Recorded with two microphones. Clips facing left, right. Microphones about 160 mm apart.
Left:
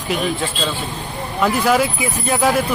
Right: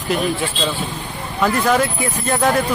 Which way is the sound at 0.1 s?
Centre (ahead or behind).